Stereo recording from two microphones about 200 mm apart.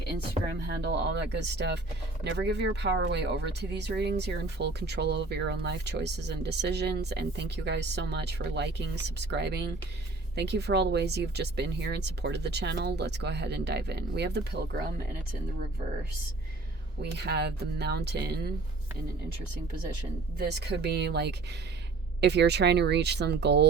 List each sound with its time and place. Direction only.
0.7 s speech: 55° right (ahead or behind)
17.0 s speech: 55° right (ahead or behind)
20.4 s speech: 55° right (ahead or behind)